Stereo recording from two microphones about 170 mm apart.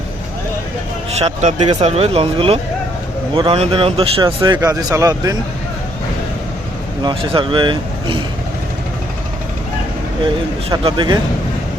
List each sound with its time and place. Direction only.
1.2 s speech: 45° right (ahead or behind)
4.4 s speech: 20° right (ahead or behind)
7.0 s speech: 30° right (ahead or behind)
10.8 s speech: 25° right (ahead or behind)